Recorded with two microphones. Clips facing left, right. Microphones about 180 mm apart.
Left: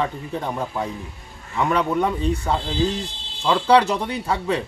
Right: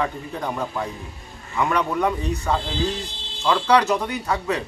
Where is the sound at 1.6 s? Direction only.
30° left (ahead or behind).